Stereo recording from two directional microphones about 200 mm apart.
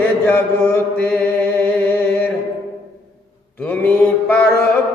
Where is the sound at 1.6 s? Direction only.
10° left (ahead or behind).